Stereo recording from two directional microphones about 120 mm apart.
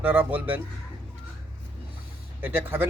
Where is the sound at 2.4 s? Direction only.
15° right (ahead or behind).